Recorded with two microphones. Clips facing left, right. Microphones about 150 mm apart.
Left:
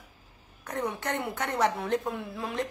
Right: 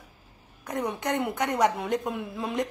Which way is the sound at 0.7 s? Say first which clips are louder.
Right 3 dB; 15° right (ahead or behind).